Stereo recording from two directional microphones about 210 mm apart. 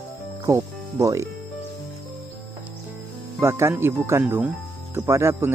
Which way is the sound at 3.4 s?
10° right (ahead or behind).